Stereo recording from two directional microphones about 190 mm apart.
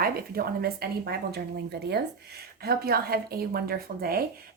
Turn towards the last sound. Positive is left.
turn(degrees=-50)  # may be behind; listen again after turning